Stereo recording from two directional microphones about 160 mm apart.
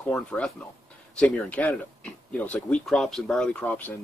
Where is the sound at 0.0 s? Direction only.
5° left (ahead or behind).